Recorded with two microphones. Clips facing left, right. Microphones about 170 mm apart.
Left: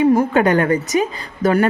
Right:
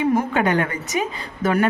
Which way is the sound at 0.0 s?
35° left (ahead or behind).